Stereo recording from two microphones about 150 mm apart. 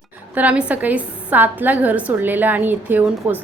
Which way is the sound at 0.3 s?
10° right (ahead or behind).